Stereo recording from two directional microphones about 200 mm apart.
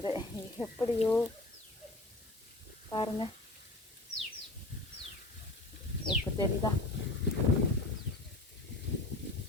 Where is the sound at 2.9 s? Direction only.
25° left (ahead or behind).